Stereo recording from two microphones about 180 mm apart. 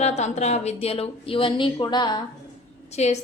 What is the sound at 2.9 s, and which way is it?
Speech, 40° left (ahead or behind).